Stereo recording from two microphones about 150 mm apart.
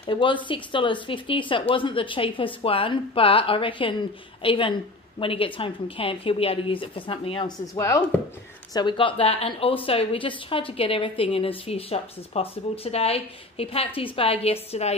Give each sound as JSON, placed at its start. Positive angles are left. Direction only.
{"t": 0.0, "sound": "a woman's voice", "side_deg": 35}
{"t": 7.7, "sound": "chopping", "side_deg": 20}
{"t": 8.7, "sound": "a woman's voice", "side_deg": 30}